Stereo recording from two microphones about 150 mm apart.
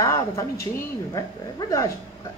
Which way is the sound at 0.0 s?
20° left (ahead or behind).